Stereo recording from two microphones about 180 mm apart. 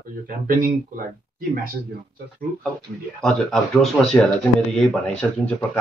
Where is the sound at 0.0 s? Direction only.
50° right (ahead or behind).